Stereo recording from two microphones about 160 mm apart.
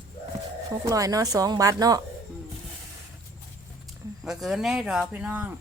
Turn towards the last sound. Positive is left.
turn(degrees=-10)  # may be behind; listen again after turning